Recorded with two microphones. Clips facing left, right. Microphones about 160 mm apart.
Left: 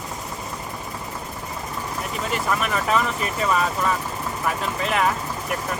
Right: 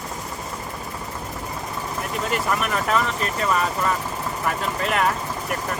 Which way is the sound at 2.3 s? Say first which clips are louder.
Even; centre (ahead or behind).